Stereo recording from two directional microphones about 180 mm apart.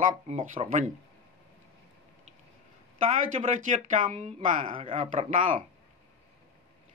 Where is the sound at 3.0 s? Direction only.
45° right (ahead or behind).